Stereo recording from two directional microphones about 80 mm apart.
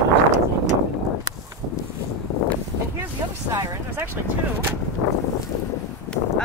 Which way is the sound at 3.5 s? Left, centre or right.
Right.